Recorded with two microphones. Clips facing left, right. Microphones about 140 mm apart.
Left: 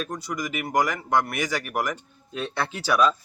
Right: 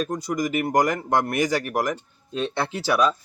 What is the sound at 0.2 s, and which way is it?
Speech, 40° right (ahead or behind).